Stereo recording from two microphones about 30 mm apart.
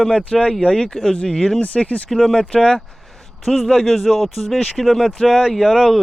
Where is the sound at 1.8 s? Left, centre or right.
Left.